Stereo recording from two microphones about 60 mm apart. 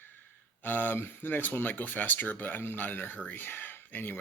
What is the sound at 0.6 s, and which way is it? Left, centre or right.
Speech, left.